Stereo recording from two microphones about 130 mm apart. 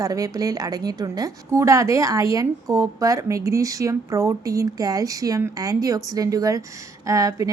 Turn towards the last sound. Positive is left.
turn(degrees=-25)  # may be behind; listen again after turning